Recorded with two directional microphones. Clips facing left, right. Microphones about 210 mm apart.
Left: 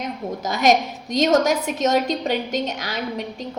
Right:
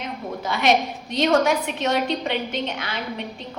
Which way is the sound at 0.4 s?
40° left (ahead or behind).